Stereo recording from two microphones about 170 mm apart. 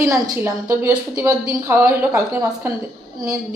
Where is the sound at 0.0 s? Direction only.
15° right (ahead or behind).